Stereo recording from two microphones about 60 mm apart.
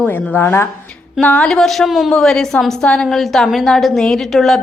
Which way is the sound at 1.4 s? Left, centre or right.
Centre.